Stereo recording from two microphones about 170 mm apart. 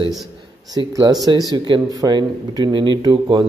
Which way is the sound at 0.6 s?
20° right (ahead or behind).